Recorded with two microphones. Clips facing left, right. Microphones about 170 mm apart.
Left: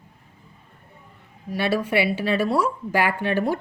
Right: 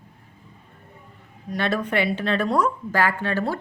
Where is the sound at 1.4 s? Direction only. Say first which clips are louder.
Left 1 dB; 10° left (ahead or behind).